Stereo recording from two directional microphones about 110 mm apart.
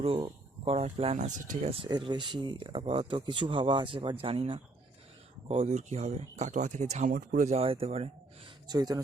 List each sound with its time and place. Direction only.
0.6 s speech: 70° right (ahead or behind)
1.9 s speech: 40° right (ahead or behind)
5.5 s speech: 90° right; by 8.1 s 65° right (ahead or behind)
8.6 s speech: 40° right (ahead or behind)